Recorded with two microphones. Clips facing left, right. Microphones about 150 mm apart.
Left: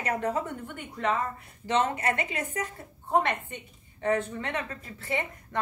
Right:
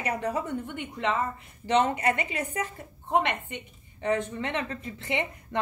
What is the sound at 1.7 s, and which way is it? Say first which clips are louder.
Speech: right 2 dB; 15° right (ahead or behind).